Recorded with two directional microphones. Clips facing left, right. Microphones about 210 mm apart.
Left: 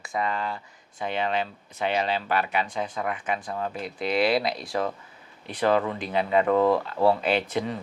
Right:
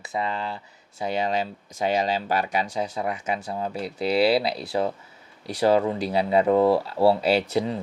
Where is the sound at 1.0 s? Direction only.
40° right (ahead or behind).